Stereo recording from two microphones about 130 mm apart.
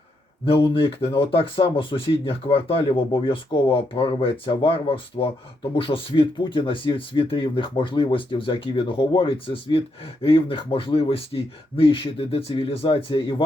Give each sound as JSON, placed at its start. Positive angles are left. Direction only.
{"t": 0.4, "sound": "speech", "side_deg": 40}